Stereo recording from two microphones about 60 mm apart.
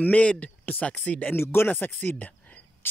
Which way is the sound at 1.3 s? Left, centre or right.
Left.